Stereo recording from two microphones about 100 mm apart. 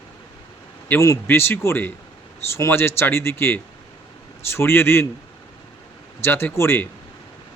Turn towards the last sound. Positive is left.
turn(degrees=25)  # may be behind; listen again after turning